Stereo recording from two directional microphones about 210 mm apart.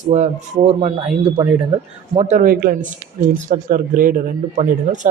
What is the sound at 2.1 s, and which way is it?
A man's voice, 35° right (ahead or behind).